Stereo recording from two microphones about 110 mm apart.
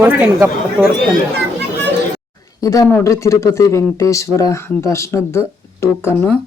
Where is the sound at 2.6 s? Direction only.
30° left (ahead or behind).